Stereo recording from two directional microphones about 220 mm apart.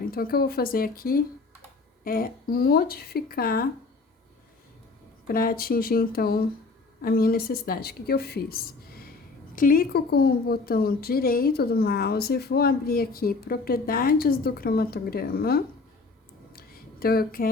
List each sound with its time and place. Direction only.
0.0 s a woman's voice: 40° left (ahead or behind)
5.3 s a woman's voice: 40° left (ahead or behind)
16.5 s a sound: 45° left (ahead or behind)